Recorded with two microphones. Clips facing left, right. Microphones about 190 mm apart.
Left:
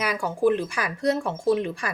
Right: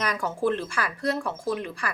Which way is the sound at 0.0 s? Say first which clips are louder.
Left 4 dB; 10° left (ahead or behind).